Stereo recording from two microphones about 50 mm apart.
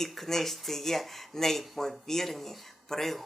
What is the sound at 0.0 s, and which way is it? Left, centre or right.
Speech, centre.